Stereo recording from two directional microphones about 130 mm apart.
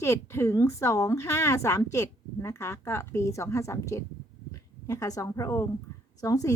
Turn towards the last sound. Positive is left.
turn(degrees=25)  # may be behind; listen again after turning